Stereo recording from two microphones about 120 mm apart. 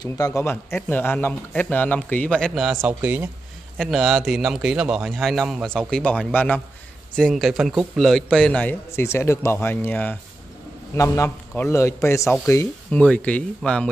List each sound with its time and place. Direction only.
0.0 s a man's voice: 30° left (ahead or behind); by 2.6 s 10° left (ahead or behind)
2.6 s a man's voice: 5° right (ahead or behind)
2.9 s speech: 15° right (ahead or behind)
3.7 s a man's voice: centre (ahead or behind)
8.9 s a man's voice: 20° left (ahead or behind)